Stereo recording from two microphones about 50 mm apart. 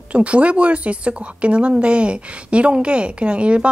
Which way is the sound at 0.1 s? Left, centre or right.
Right.